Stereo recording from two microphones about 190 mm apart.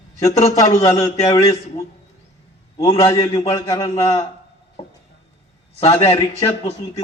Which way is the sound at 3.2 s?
20° left (ahead or behind).